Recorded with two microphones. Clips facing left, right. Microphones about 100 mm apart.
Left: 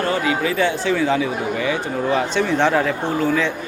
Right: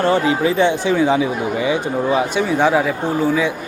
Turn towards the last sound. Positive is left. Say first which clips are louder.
# right 2 dB
turn(degrees=-10)  # may be behind; listen again after turning